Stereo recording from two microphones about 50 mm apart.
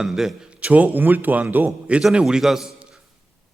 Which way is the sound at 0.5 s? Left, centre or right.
Right.